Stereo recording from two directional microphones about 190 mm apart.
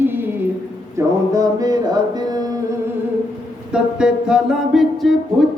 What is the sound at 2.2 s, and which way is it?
Music, 20° right (ahead or behind).